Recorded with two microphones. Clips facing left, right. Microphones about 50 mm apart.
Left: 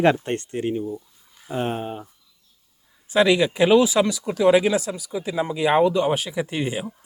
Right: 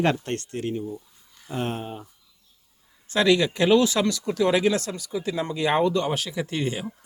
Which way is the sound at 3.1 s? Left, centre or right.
Centre.